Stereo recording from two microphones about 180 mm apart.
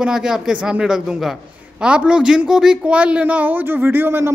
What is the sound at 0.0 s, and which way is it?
A man's voice, 5° right (ahead or behind).